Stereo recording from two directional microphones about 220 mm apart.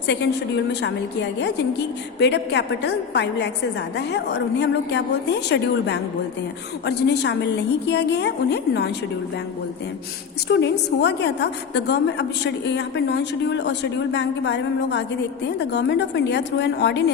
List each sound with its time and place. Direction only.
0.1 s a woman's voice: 50° left (ahead or behind)
10.5 s a woman's voice: 50° left (ahead or behind)